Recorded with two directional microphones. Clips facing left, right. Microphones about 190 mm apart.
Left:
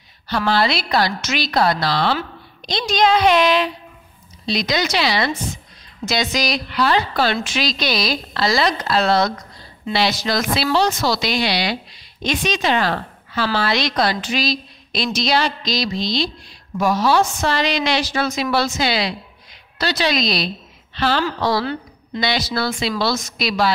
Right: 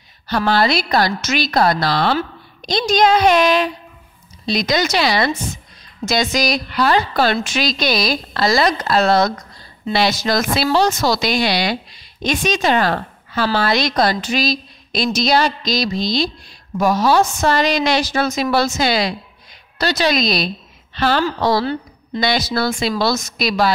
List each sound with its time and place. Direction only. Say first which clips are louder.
0.3 s a woman's voice: right 2 dB; 45° right (ahead or behind)